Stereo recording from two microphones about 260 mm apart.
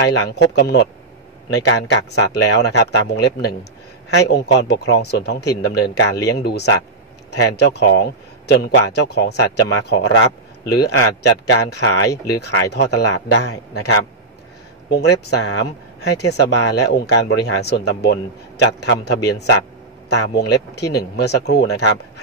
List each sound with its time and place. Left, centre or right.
0.0 s a man's voice: left
12.4 s a man's voice: left
16.1 s speech: left
16.3 s speech: left